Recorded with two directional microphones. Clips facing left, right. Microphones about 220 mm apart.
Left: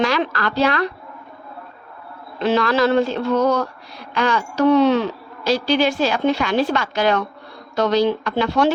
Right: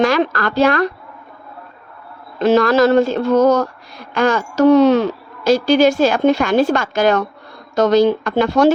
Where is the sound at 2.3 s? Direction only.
45° right (ahead or behind).